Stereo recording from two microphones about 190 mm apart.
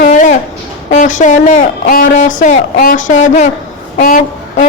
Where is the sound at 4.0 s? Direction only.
40° left (ahead or behind).